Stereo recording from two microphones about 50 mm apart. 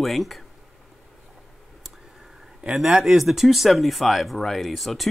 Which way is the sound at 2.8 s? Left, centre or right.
Centre.